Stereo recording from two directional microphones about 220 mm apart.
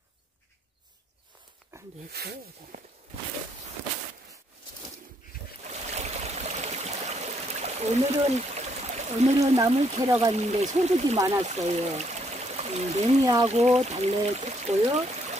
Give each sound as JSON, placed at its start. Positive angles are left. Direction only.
{"t": 2.1, "sound": "speech", "side_deg": -45}
{"t": 5.6, "sound": "stream", "side_deg": -30}
{"t": 9.9, "sound": "speech", "side_deg": -15}
{"t": 10.3, "sound": "speech", "side_deg": -30}
{"t": 13.2, "sound": "speech", "side_deg": -15}
{"t": 13.5, "sound": "speech", "side_deg": -30}